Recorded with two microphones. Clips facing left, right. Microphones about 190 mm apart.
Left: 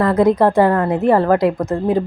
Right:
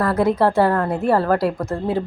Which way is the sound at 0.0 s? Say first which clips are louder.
Left 4 dB; 15° left (ahead or behind).